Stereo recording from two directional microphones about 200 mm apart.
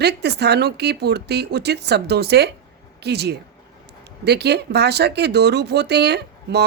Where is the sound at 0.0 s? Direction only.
55° right (ahead or behind).